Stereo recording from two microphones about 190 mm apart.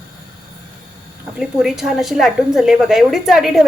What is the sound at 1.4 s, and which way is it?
A woman's voice, centre (ahead or behind).